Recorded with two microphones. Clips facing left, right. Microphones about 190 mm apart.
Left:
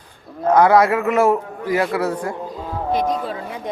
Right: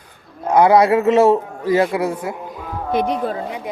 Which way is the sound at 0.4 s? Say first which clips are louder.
Right 1 dB; 15° right (ahead or behind).